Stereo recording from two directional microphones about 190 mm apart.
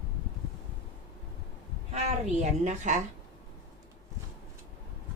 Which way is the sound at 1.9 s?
35° right (ahead or behind).